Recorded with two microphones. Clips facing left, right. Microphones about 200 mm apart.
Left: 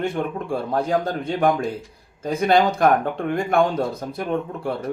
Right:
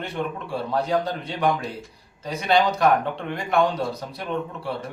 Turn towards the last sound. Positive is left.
turn(degrees=50)  # may be behind; listen again after turning